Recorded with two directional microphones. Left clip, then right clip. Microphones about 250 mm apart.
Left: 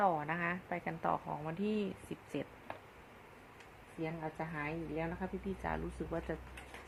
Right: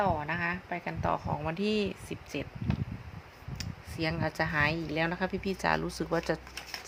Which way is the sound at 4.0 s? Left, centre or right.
Right.